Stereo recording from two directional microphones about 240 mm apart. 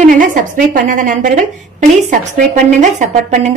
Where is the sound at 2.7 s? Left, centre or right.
Right.